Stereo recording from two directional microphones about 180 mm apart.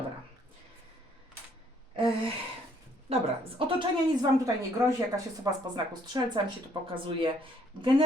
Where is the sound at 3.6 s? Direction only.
30° right (ahead or behind).